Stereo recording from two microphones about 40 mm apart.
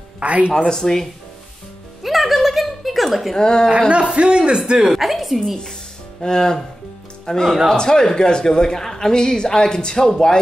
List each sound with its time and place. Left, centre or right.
0.2 s speech: right
0.6 s a woman's voice: centre
2.0 s chuckle: centre
3.3 s speech: centre
3.9 s a man's voice: right
4.9 s a woman's voice: centre
6.2 s a woman's voice: centre